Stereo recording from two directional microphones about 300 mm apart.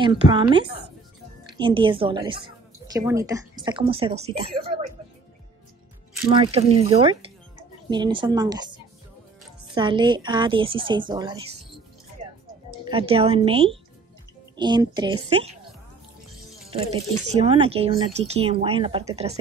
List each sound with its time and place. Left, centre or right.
0.0 s speech: centre
6.1 s speech: centre
9.8 s speech: centre
12.8 s speech: centre
16.9 s speech: centre